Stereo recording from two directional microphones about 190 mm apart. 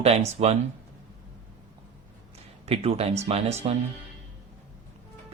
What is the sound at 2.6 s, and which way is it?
Speech, 30° right (ahead or behind).